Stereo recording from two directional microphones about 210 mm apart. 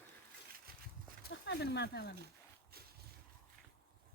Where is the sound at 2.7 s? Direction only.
50° right (ahead or behind).